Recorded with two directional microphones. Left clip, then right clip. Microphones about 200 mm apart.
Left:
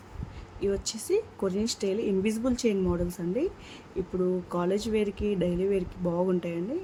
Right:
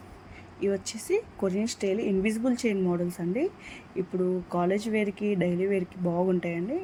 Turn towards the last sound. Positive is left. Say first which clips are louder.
# right 1 dB
turn(degrees=0)  # may be behind; listen again after turning